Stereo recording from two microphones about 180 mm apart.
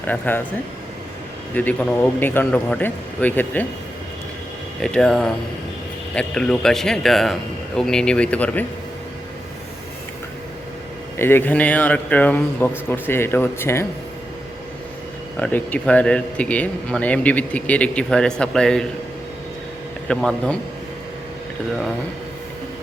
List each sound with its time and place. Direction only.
0.0 s speech: 10° left (ahead or behind)
1.5 s speech: 10° left (ahead or behind)
4.8 s speech: 5° left (ahead or behind)
11.2 s speech: 10° left (ahead or behind)
15.4 s speech: 10° left (ahead or behind)
20.1 s speech: 5° left (ahead or behind)